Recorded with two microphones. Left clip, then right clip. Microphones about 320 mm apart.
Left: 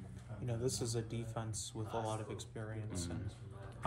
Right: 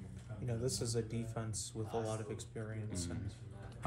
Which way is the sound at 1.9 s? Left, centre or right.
Centre.